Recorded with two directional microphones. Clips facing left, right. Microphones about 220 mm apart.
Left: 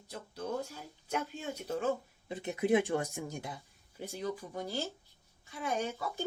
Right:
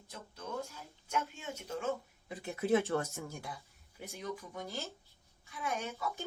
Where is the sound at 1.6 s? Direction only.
35° left (ahead or behind).